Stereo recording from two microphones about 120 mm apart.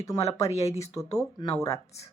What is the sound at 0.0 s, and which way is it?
Speech, 25° left (ahead or behind).